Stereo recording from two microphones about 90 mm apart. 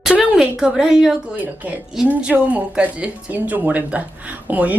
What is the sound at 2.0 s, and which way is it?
Speech, 15° right (ahead or behind).